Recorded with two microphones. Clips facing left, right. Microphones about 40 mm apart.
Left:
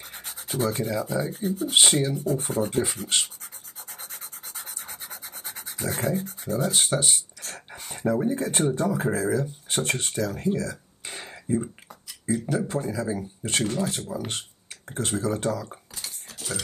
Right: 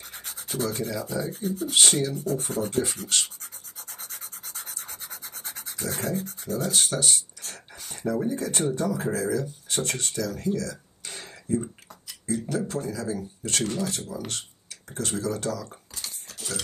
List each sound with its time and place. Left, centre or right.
0.1 s rub: centre
4.0 s rub: centre
5.0 s a sound: centre
5.8 s speech: centre
6.7 s speech: left
15.7 s cutlery: centre